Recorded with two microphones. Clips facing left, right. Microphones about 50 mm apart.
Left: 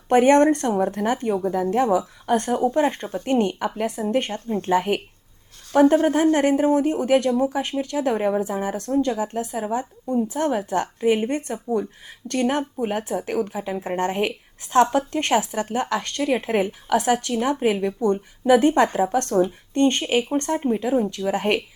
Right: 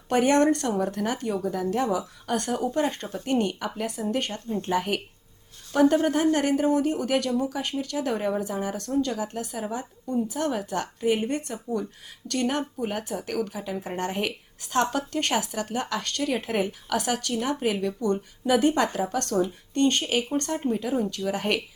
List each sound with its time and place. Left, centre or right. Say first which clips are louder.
0.1 s speech: left 5 dB; left
4.7 s speech: left 6 dB; left